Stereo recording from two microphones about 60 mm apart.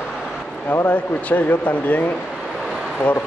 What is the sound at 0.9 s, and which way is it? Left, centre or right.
Speech, left.